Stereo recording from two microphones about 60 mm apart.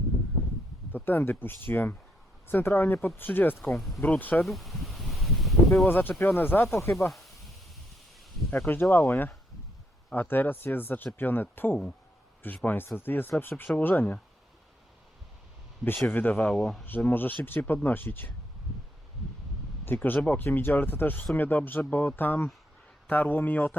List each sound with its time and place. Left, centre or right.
0.9 s speech: left
3.6 s speech: centre
4.0 s speech: left
4.4 s a sound: centre
5.9 s speech: left
6.7 s speech: left
7.1 s sizzle: centre
8.4 s speech: left
13.7 s speech: left
16.0 s speech: left
16.5 s speech: centre
17.1 s speech: left
19.8 s speech: left